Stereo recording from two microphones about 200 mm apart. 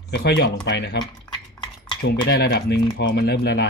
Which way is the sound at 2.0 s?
55° left (ahead or behind).